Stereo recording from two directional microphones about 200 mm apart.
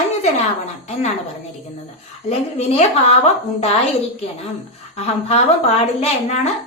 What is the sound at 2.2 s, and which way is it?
A woman's voice, 35° left (ahead or behind).